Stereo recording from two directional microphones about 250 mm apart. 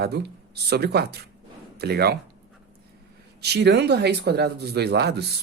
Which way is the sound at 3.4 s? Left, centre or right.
Right.